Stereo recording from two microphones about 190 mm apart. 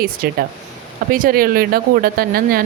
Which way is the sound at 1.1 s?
50° right (ahead or behind).